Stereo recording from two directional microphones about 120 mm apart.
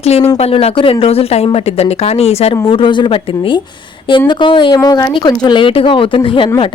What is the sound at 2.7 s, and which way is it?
A woman's voice, 45° left (ahead or behind).